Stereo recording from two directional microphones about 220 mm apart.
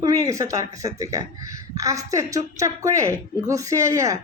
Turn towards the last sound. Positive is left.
turn(degrees=-15)  # may be behind; listen again after turning